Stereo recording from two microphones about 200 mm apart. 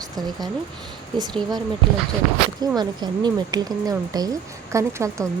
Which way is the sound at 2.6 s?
20° right (ahead or behind).